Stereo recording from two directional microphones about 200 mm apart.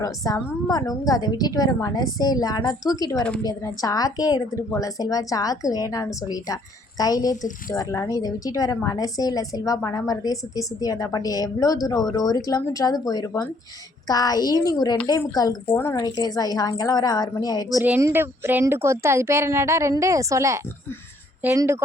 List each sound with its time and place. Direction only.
0.0 s a woman's voice: 20° left (ahead or behind)
17.8 s a woman's voice: 10° right (ahead or behind)